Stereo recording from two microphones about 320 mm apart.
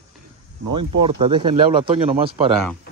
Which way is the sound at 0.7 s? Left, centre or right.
Centre.